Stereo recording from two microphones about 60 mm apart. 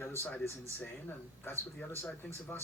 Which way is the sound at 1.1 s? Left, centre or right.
Left.